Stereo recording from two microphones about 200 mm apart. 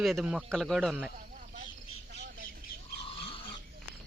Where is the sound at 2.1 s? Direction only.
50° right (ahead or behind).